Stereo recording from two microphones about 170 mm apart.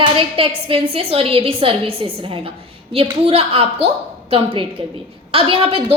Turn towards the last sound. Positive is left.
turn(degrees=-35)  # may be behind; listen again after turning